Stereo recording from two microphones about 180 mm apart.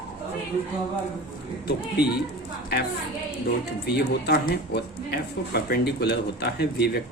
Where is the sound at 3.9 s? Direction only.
65° left (ahead or behind).